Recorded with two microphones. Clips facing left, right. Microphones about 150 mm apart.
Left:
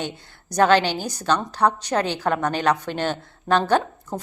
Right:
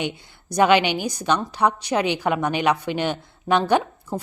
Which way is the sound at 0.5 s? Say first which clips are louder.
Even; 10° right (ahead or behind).